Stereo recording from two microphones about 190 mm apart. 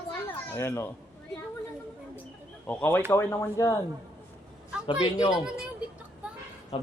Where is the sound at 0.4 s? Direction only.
10° left (ahead or behind).